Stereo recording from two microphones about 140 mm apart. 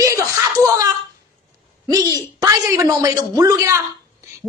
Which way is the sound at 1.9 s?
25° right (ahead or behind).